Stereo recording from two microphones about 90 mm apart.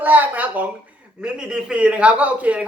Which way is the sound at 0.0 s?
20° right (ahead or behind).